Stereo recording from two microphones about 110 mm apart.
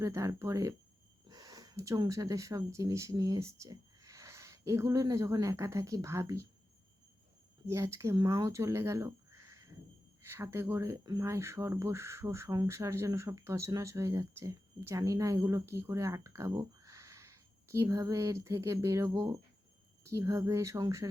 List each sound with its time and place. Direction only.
0.0 s speech: 30° right (ahead or behind)
7.7 s speech: 25° right (ahead or behind)